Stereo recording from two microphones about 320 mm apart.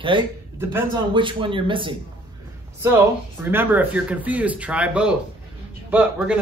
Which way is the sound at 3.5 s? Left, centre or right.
Centre.